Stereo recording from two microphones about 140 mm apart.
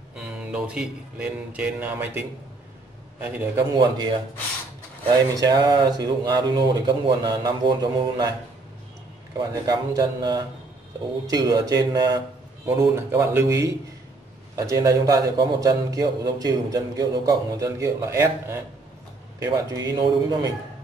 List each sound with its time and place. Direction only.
0.1 s speech: 5° right (ahead or behind)
3.7 s a man's voice: 30° right (ahead or behind)
9.5 s a man's voice: 25° right (ahead or behind)